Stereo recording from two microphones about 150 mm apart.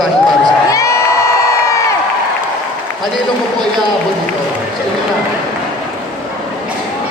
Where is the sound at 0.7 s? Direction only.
20° left (ahead or behind).